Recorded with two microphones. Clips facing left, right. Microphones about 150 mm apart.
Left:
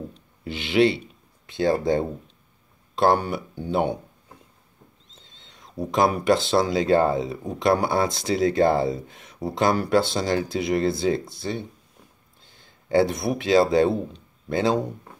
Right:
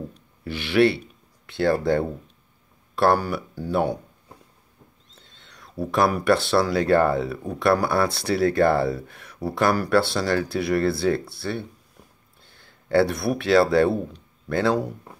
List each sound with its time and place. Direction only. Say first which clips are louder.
0.4 s speech: right 1 dB; 20° left (ahead or behind)
5.1 s a sound: right 1 dB; 20° left (ahead or behind)
5.9 s speech: even; 20° left (ahead or behind)